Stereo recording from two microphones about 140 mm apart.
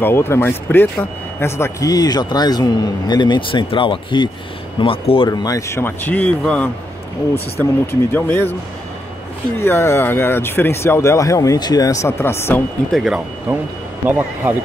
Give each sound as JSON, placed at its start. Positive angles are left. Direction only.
{"t": 0.0, "sound": "speech", "side_deg": 15}
{"t": 5.3, "sound": "a man's voice", "side_deg": 25}
{"t": 7.8, "sound": "a man's voice", "side_deg": 15}
{"t": 9.6, "sound": "speech", "side_deg": 20}
{"t": 12.9, "sound": "speech", "side_deg": -5}